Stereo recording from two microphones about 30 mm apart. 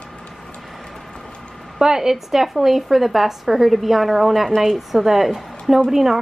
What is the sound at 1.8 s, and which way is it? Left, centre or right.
A woman's voice, right.